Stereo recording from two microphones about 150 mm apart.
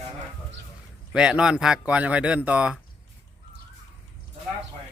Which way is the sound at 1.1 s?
5° right (ahead or behind).